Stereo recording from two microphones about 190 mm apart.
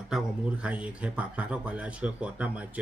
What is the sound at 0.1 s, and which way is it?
A man's voice, 5° right (ahead or behind).